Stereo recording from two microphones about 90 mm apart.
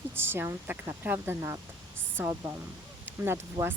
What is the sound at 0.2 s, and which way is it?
Speech, 25° right (ahead or behind).